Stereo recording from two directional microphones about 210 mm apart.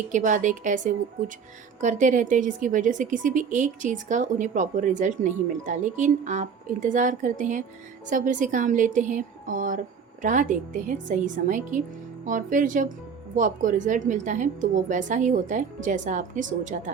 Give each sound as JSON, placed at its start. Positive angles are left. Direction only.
{"t": 0.1, "sound": "speech", "side_deg": -35}